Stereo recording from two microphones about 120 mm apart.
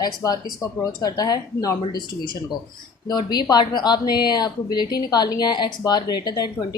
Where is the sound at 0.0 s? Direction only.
30° left (ahead or behind).